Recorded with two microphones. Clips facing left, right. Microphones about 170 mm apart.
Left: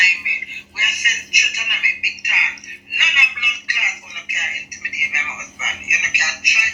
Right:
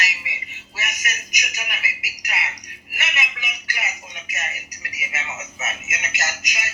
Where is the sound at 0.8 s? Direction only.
35° right (ahead or behind).